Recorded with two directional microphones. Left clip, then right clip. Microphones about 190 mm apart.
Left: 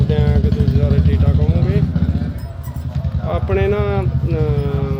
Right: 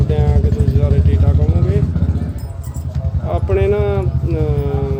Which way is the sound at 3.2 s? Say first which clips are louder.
Right 2 dB; 5° right (ahead or behind).